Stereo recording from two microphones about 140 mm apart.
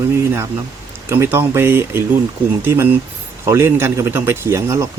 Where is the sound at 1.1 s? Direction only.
15° right (ahead or behind).